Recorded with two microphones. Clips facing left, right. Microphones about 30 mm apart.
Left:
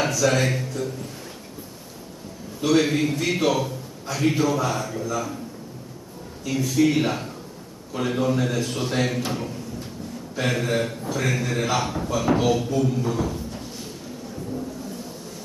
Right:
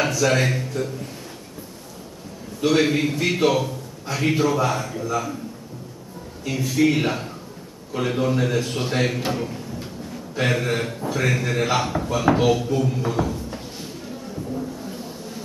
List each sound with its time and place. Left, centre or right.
0.0 s speech: centre
2.6 s a man's voice: centre
6.4 s a man's voice: centre